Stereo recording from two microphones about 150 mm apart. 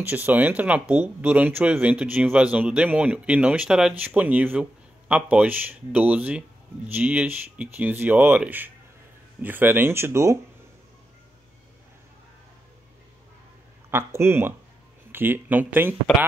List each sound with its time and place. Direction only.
0.0 s speech: 15° right (ahead or behind)
13.8 s speech: 15° right (ahead or behind)